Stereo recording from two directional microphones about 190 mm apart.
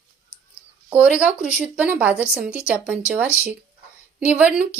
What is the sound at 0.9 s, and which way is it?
Speech, 5° right (ahead or behind).